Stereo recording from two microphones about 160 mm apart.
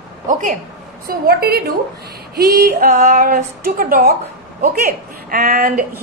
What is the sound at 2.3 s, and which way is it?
Female singing, 65° right (ahead or behind).